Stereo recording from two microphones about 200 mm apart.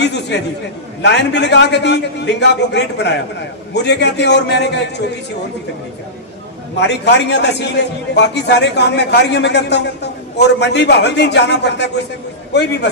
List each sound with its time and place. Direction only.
0.0 s a man's voice: 60° left (ahead or behind)
6.8 s a man's voice: 60° left (ahead or behind)